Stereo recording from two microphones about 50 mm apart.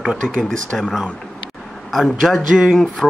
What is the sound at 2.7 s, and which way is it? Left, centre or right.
Music, centre.